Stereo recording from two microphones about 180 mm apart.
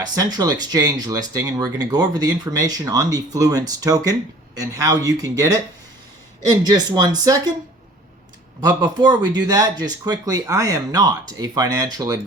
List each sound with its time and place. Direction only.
0.1 s speech: 20° right (ahead or behind)
6.5 s speech: 20° right (ahead or behind)
8.6 s speech: 20° right (ahead or behind)